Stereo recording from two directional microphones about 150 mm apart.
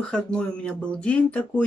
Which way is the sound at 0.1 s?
5° left (ahead or behind).